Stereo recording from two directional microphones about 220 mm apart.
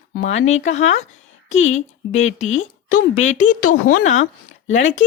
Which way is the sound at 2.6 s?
35° left (ahead or behind).